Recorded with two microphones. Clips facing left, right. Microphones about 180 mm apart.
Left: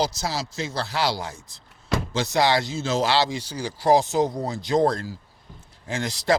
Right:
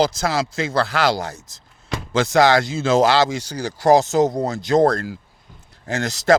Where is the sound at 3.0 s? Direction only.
45° right (ahead or behind).